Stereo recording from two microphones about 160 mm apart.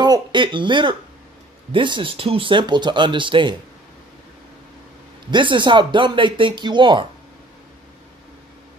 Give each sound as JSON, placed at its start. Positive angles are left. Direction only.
{"t": 0.0, "sound": "speech", "side_deg": -30}
{"t": 5.3, "sound": "speech", "side_deg": -30}